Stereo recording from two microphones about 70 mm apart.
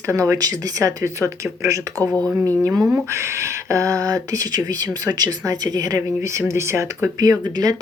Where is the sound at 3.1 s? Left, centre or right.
Right.